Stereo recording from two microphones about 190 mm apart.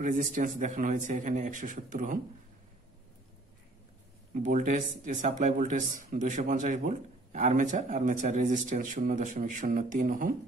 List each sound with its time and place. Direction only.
0.0 s speech: 40° right (ahead or behind)
4.3 s speech: 45° right (ahead or behind)